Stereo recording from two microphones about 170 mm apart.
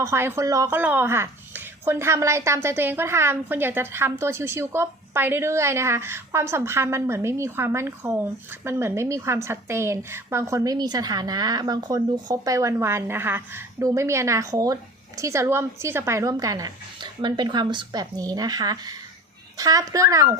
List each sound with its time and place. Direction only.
0.0 s speech: 15° right (ahead or behind)